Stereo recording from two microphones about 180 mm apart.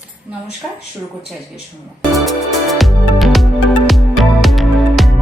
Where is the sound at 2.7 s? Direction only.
Centre (ahead or behind).